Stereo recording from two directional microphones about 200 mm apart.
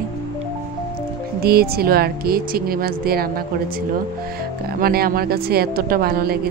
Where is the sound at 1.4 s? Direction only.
50° right (ahead or behind).